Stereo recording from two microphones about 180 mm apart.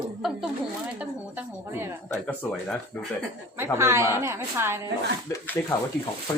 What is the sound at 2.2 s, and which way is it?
Speech, 5° left (ahead or behind).